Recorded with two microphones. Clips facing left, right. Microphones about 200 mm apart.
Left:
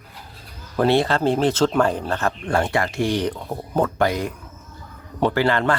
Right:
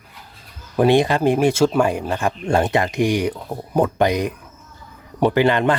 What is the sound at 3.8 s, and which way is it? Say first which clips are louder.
Speech: right 3 dB; 15° right (ahead or behind).